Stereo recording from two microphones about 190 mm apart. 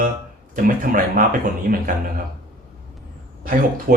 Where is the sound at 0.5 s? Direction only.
45° right (ahead or behind).